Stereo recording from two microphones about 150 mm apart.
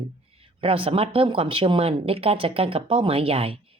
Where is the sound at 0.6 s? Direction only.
40° right (ahead or behind).